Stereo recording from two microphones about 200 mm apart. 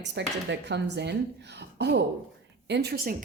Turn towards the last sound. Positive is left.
turn(degrees=-55)  # may be behind; listen again after turning